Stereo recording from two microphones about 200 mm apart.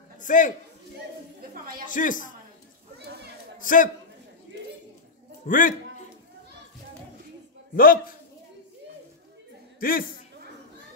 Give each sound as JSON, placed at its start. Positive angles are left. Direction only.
{"t": 0.2, "sound": "a man's voice", "side_deg": 40}
{"t": 1.5, "sound": "a woman's voice", "side_deg": -45}
{"t": 1.9, "sound": "a man's voice", "side_deg": 40}
{"t": 3.0, "sound": "a sound", "side_deg": -55}
{"t": 3.5, "sound": "a man's voice", "side_deg": 40}
{"t": 5.5, "sound": "a man's voice", "side_deg": 40}
{"t": 7.7, "sound": "a man's voice", "side_deg": 45}
{"t": 9.8, "sound": "a man's voice", "side_deg": 45}